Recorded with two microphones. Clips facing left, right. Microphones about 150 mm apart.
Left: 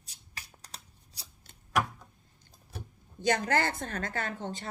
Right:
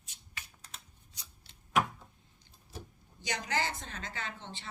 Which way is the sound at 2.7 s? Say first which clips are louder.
Left 1 dB; 60° left (ahead or behind).